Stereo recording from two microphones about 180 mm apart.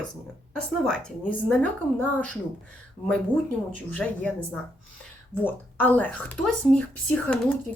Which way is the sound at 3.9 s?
10° left (ahead or behind).